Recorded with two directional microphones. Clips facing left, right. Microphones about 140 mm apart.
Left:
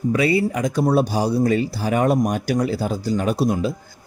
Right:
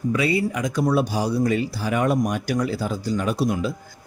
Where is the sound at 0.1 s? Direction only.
35° left (ahead or behind).